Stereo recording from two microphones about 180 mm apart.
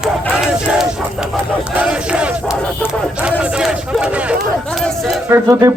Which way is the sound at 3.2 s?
5° right (ahead or behind).